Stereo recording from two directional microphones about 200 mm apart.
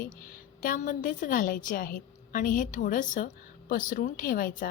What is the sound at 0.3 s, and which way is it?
A woman's voice, 45° left (ahead or behind).